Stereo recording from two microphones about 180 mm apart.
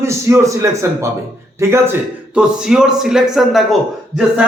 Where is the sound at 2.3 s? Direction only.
5° right (ahead or behind).